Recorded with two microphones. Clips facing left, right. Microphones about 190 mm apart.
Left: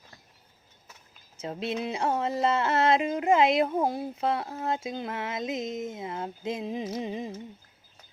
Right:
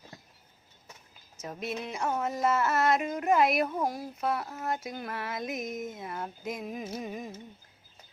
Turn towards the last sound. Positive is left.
turn(degrees=25)  # may be behind; listen again after turning